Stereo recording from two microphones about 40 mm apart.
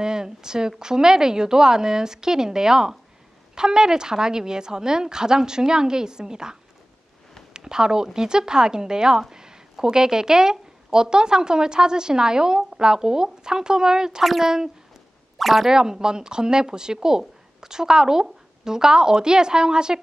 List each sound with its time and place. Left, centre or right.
0.0 s a woman's voice: centre
15.3 s speech: centre
15.7 s a woman's voice: centre